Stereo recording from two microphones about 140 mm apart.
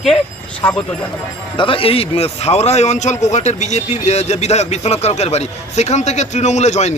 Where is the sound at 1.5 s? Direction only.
40° left (ahead or behind).